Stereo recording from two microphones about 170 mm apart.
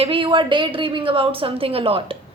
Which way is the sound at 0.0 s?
30° right (ahead or behind).